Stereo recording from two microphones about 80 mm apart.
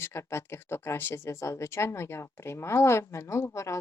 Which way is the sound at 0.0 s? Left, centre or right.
Left.